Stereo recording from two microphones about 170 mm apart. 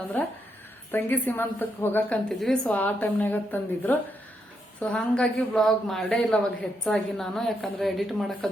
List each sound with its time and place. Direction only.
0.2 s a woman's voice: 10° left (ahead or behind)